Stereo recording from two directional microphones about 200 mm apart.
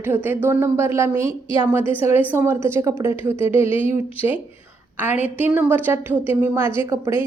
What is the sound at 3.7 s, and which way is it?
Speech, 25° left (ahead or behind).